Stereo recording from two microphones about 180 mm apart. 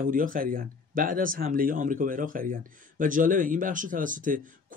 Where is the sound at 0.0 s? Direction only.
50° right (ahead or behind).